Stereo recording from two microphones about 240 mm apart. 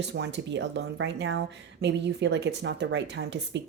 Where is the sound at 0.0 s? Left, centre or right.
Right.